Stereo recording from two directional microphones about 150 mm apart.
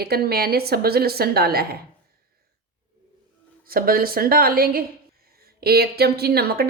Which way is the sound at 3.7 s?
80° right.